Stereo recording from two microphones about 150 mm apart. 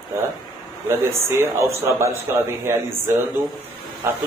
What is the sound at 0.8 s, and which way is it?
Speech, 20° right (ahead or behind).